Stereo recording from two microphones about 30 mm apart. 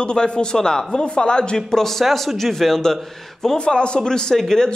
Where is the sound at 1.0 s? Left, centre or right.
Left.